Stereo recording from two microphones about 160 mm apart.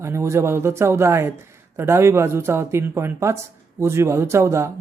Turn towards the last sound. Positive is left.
turn(degrees=-20)  # may be behind; listen again after turning